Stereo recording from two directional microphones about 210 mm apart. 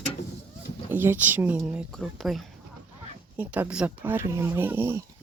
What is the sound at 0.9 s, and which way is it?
Speech, 10° right (ahead or behind).